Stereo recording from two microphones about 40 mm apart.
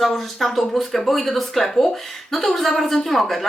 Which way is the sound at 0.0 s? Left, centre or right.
Centre.